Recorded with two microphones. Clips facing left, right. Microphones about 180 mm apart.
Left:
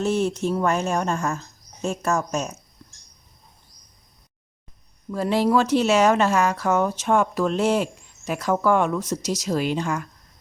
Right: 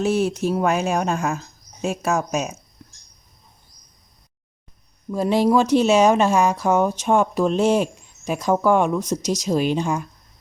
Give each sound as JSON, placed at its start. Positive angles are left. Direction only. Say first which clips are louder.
{"t": 0.0, "sound": "speech", "louder": "right 2 dB", "side_deg": -10}
{"t": 5.1, "sound": "speech", "louder": "right 2 dB", "side_deg": -15}